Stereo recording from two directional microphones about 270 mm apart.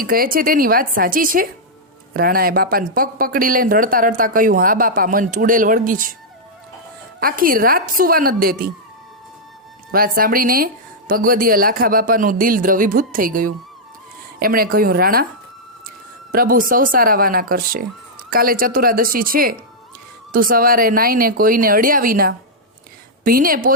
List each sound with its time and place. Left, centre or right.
0.0 s speech: right
7.2 s speech: right
9.9 s speech: right
16.3 s speech: right